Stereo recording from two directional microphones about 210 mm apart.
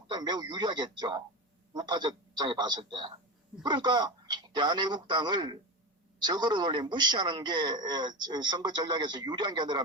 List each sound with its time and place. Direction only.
0.1 s a man's voice: 20° right (ahead or behind)